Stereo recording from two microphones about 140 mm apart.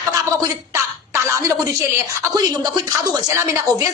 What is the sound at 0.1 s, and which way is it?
A woman's voice, 25° right (ahead or behind).